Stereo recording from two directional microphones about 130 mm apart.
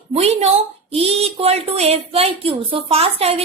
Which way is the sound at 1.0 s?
50° right (ahead or behind).